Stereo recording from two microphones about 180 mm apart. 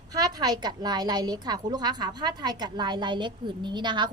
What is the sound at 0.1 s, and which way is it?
A woman's voice, 20° right (ahead or behind).